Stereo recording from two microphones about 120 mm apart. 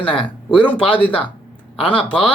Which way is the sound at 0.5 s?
10° left (ahead or behind).